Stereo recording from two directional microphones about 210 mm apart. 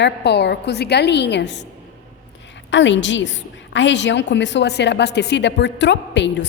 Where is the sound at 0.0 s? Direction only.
55° left (ahead or behind).